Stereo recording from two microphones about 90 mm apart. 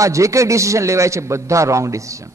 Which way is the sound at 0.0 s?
35° right (ahead or behind).